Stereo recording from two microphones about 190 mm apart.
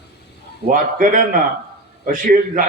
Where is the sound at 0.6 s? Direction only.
45° right (ahead or behind).